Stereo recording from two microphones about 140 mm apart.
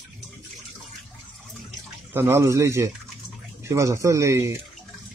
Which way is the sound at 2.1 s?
20° right (ahead or behind).